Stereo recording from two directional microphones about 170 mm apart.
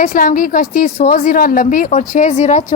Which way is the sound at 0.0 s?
55° left (ahead or behind).